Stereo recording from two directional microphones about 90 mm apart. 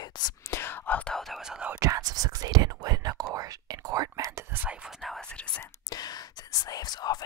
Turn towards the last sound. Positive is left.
turn(degrees=50)  # may be behind; listen again after turning